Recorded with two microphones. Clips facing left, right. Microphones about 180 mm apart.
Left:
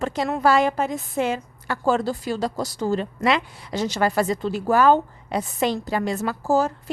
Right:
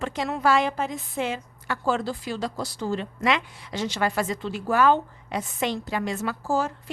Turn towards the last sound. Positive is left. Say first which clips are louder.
# left 5 dB
turn(degrees=40)  # may be behind; listen again after turning